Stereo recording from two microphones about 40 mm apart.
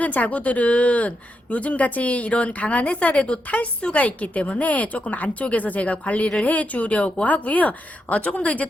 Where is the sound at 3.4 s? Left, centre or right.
Left.